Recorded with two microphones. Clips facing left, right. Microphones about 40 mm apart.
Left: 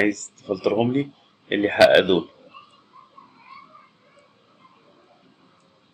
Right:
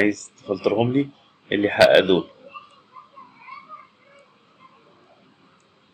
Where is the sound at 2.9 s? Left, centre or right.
Right.